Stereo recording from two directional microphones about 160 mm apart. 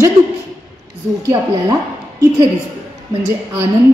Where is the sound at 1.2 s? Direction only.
20° right (ahead or behind).